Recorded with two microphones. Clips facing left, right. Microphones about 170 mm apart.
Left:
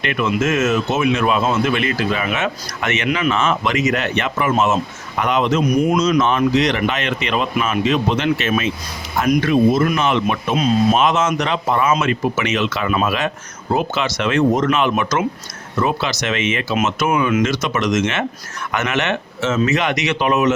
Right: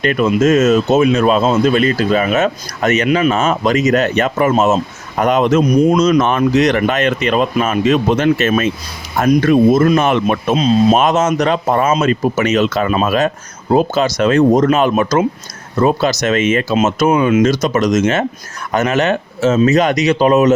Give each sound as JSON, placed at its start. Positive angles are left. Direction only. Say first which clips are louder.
{"t": 0.0, "sound": "speech", "louder": "right 6 dB", "side_deg": -40}